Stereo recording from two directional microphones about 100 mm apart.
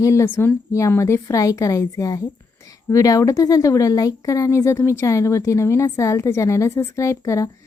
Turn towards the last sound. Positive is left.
turn(degrees=30)  # may be behind; listen again after turning